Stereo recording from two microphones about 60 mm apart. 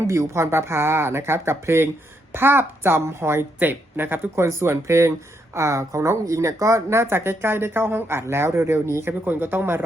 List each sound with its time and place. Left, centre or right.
0.1 s a woman's voice: right
4.4 s speech: right